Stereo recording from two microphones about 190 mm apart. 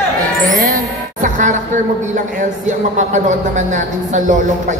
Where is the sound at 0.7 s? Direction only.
40° right (ahead or behind).